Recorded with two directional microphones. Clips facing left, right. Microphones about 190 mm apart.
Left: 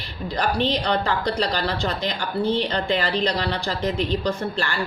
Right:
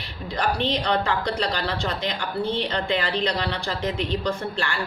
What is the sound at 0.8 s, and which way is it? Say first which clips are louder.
A woman's voice: left 1 dB; 35° left (ahead or behind).